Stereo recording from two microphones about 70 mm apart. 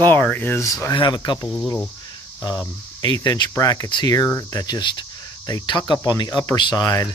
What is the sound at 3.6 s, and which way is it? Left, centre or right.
Speech, left.